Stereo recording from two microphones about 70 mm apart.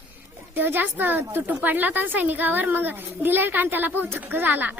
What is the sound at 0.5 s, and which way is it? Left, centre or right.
Speech, right.